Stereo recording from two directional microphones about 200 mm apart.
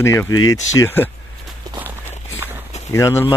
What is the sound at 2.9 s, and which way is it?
Speech, 15° left (ahead or behind).